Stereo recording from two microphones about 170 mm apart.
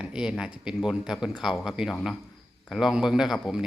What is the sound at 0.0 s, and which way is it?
Speech, 5° right (ahead or behind).